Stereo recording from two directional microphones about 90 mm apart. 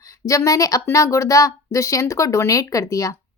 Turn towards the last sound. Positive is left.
turn(degrees=40)  # may be behind; listen again after turning